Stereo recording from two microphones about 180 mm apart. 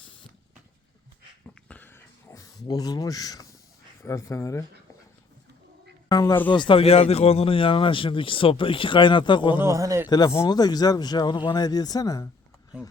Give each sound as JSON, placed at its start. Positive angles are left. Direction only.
{"t": 1.6, "sound": "a sound", "side_deg": 10}
{"t": 4.0, "sound": "speech", "side_deg": 15}
{"t": 6.1, "sound": "speech", "side_deg": 20}
{"t": 9.6, "sound": "a man's voice", "side_deg": -15}
{"t": 10.1, "sound": "speech", "side_deg": 20}